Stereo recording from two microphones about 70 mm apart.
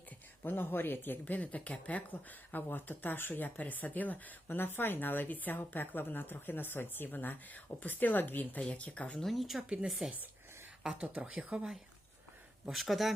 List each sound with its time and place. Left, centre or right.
0.4 s speech: left
9.1 s speech: centre
9.6 s speech: centre
12.6 s speech: centre